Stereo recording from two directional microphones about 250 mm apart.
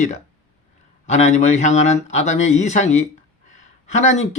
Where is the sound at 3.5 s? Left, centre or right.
Left.